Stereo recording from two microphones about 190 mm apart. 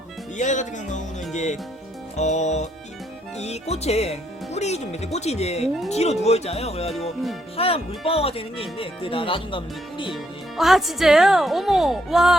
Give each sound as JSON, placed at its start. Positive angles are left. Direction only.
{"t": 0.3, "sound": "speech", "side_deg": 40}
{"t": 10.6, "sound": "a woman's voice", "side_deg": 0}